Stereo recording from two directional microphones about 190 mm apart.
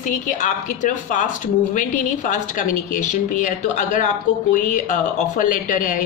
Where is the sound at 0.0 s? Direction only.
40° left (ahead or behind).